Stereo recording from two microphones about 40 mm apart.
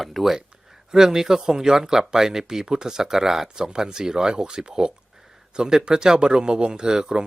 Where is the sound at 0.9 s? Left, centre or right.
Centre.